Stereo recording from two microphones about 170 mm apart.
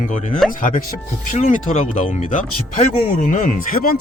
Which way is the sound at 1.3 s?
50° left (ahead or behind).